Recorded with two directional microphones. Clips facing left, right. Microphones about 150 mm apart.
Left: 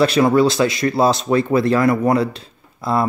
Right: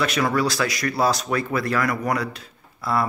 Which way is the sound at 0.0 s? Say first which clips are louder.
Left 8 dB; 30° left (ahead or behind).